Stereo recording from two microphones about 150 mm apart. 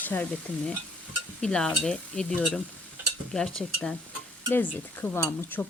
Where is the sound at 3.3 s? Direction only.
5° left (ahead or behind).